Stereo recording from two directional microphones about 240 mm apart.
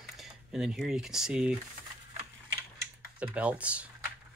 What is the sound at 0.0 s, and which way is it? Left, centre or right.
Speech, centre.